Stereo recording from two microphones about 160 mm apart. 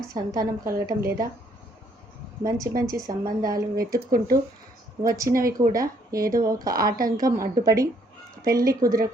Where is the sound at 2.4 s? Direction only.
20° right (ahead or behind).